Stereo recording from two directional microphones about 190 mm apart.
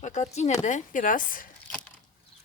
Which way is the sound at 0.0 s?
40° left (ahead or behind).